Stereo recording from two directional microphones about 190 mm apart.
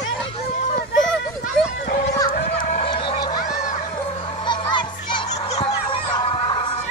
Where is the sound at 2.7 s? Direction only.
30° left (ahead or behind).